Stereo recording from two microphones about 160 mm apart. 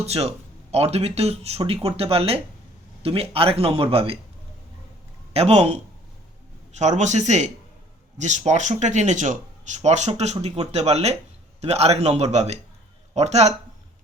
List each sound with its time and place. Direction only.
0.0 s speech: 40° right (ahead or behind)
5.3 s speech: 40° right (ahead or behind)